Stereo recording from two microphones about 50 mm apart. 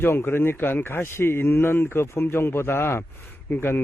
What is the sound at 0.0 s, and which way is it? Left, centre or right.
A man's voice, left.